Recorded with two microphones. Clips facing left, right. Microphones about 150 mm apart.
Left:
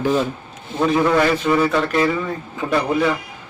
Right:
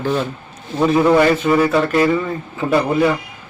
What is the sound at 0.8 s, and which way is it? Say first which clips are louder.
A man's voice: right 3 dB; 5° right (ahead or behind).